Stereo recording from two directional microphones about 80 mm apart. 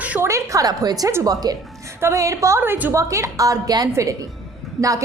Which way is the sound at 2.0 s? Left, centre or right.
Right.